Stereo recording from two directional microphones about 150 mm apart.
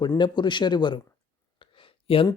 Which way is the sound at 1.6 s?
35° left (ahead or behind).